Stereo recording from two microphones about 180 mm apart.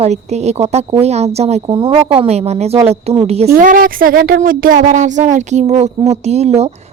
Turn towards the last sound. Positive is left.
turn(degrees=-35)  # may be behind; listen again after turning